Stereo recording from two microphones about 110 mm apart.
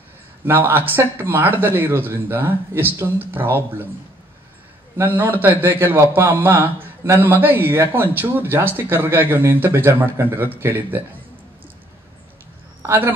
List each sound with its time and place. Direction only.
0.5 s a man's voice: 20° right (ahead or behind)
4.9 s a man's voice: 20° right (ahead or behind)
12.8 s a man's voice: 20° right (ahead or behind)